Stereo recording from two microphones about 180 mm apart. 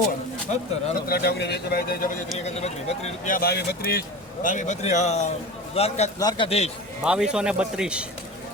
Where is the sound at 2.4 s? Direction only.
35° left (ahead or behind); by 4.0 s 60° left (ahead or behind).